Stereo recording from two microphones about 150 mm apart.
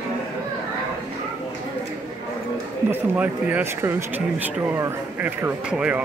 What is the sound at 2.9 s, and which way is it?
Speech, 10° right (ahead or behind).